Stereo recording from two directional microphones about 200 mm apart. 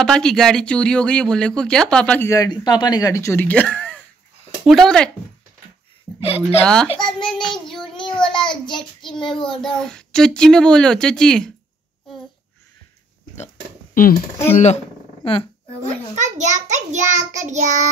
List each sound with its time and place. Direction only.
0.0 s speech: 5° left (ahead or behind)
6.1 s child singing: 30° left (ahead or behind)
6.6 s speech: 5° left (ahead or behind)
6.9 s child singing: 20° left (ahead or behind)
7.2 s speech: 5° left (ahead or behind)
7.8 s child singing: 25° left (ahead or behind)
8.2 s speech: 5° left (ahead or behind)
8.6 s child singing: 20° left (ahead or behind)
9.1 s speech: centre (ahead or behind)
14.0 s speech: 40° left (ahead or behind)
15.2 s speech: 30° left (ahead or behind)
16.3 s child singing: 35° right (ahead or behind)